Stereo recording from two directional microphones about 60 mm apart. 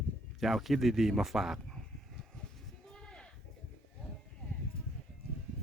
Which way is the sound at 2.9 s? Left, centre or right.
Centre.